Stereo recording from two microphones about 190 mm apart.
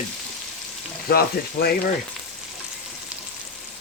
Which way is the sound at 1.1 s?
55° left (ahead or behind).